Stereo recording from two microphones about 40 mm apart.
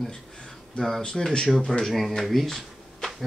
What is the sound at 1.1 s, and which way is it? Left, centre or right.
Speech, centre.